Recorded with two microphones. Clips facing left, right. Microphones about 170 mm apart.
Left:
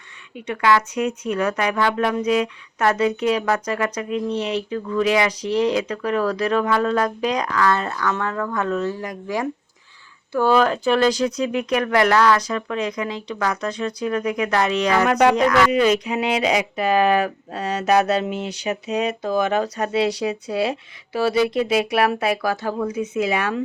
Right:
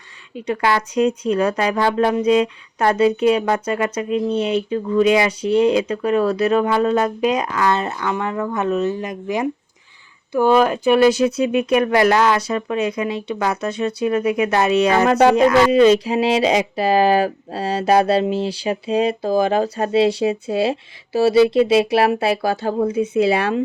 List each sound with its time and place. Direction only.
0.3 s speech: 30° right (ahead or behind)